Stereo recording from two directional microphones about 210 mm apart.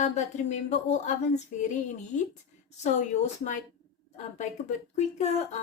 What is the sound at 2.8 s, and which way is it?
Speech, 35° left (ahead or behind).